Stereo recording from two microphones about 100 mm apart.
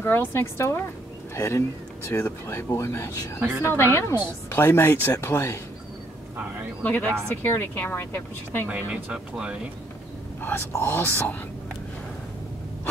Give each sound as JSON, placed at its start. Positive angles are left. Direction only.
{"t": 0.0, "sound": "speech", "side_deg": 20}
{"t": 3.3, "sound": "speech", "side_deg": -20}
{"t": 3.7, "sound": "speech", "side_deg": 25}
{"t": 6.8, "sound": "speech", "side_deg": 20}
{"t": 8.6, "sound": "speech", "side_deg": -10}
{"t": 10.4, "sound": "speech", "side_deg": 25}